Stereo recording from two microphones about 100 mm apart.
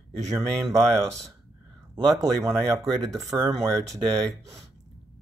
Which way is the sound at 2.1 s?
30° right (ahead or behind).